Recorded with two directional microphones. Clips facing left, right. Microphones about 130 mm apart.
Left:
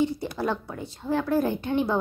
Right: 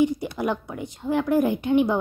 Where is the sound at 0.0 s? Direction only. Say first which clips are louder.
Right 3 dB; 15° right (ahead or behind).